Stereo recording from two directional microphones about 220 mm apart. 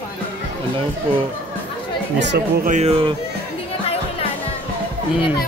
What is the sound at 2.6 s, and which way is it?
Speech, 30° right (ahead or behind).